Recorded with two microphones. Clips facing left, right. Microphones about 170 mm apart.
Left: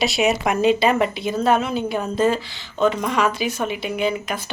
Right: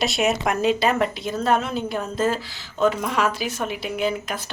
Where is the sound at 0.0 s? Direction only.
Centre (ahead or behind).